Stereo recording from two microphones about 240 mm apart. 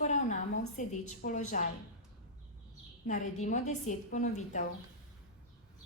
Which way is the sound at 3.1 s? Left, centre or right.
Left.